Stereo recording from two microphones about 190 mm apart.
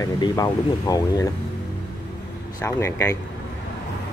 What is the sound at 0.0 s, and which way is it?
Speech, 20° left (ahead or behind).